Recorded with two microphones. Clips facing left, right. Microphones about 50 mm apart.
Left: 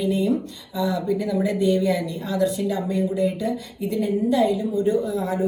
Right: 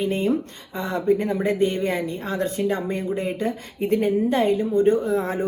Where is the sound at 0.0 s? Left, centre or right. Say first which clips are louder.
Even; right.